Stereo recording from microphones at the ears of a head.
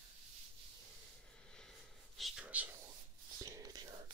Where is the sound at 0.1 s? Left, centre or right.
Right.